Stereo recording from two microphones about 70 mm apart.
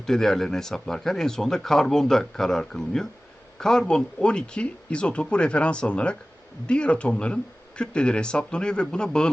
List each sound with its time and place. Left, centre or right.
0.0 s speech: centre